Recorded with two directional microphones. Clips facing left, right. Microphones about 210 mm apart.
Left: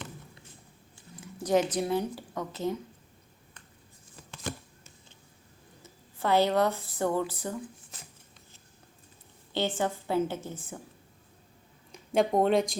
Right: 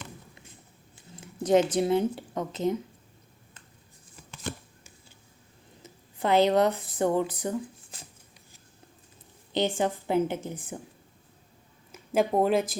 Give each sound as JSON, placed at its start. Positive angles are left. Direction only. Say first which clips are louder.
{"t": 0.9, "sound": "a sound", "louder": "right 4 dB", "side_deg": -20}
{"t": 1.7, "sound": "speech", "louder": "right 5 dB", "side_deg": -25}
{"t": 5.8, "sound": "speech", "louder": "right 2 dB", "side_deg": -20}
{"t": 9.5, "sound": "a woman's voice", "louder": "right 3 dB", "side_deg": -15}
{"t": 11.9, "sound": "speech", "louder": "right 1 dB", "side_deg": -5}